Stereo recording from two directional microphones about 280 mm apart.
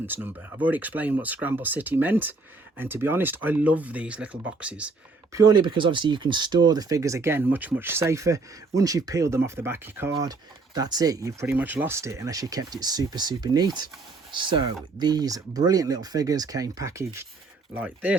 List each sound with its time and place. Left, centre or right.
0.0 s speech: centre